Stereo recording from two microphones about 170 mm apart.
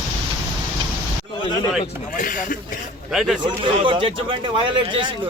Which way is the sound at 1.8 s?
50° left (ahead or behind).